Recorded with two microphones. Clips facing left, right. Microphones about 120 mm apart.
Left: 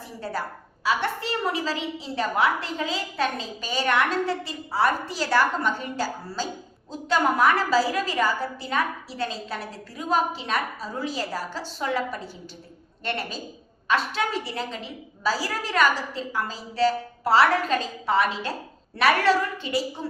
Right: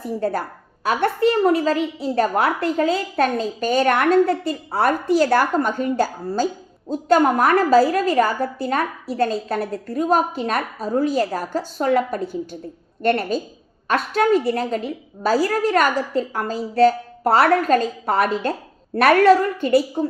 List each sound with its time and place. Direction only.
0.0 s a woman's voice: 50° right (ahead or behind)